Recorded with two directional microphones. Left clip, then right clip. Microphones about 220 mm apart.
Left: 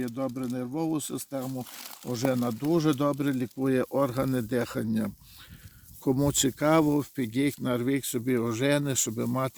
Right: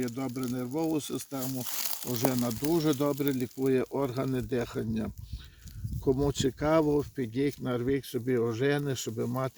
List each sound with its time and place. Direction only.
0.0 s speech: 20° left (ahead or behind)
1.4 s speech: 55° right (ahead or behind)
2.6 s speech: 40° left (ahead or behind)